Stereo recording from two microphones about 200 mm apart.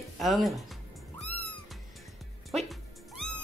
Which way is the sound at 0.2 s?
Centre (ahead or behind).